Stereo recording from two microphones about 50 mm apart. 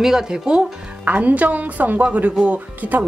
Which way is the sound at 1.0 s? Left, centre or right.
Right.